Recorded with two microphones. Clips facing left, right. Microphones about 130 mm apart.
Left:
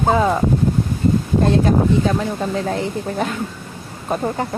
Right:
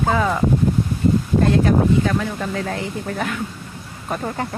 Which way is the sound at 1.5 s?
25° left (ahead or behind).